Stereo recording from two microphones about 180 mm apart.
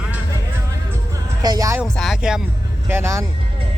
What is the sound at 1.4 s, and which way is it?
Speech, 20° right (ahead or behind).